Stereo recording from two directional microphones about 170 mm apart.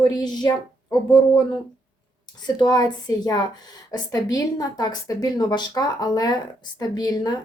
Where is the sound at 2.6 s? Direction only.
25° left (ahead or behind).